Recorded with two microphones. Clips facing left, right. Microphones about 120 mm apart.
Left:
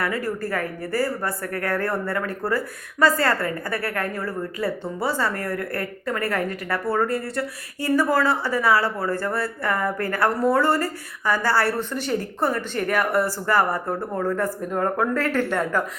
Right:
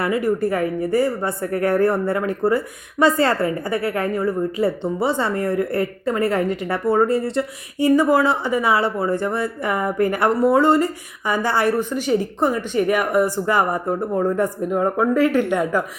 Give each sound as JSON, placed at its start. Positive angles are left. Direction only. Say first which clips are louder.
{"t": 0.0, "sound": "a woman's voice", "louder": "right 6 dB", "side_deg": -20}